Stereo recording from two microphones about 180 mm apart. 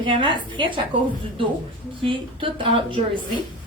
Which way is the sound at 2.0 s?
30° right (ahead or behind).